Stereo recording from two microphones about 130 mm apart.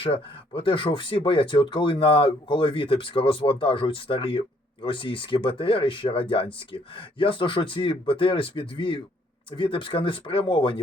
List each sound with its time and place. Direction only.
0.0 s speech: 40° left (ahead or behind)